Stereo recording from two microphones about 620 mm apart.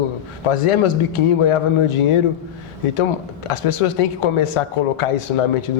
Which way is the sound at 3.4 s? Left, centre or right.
Left.